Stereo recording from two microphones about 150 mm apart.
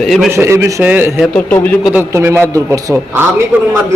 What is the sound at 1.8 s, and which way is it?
A man's voice, 15° right (ahead or behind).